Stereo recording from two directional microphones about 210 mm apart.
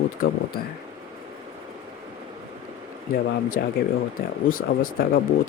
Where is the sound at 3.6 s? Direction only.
50° left (ahead or behind).